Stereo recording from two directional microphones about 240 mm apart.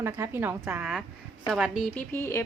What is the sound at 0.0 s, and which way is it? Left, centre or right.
A woman's voice, centre.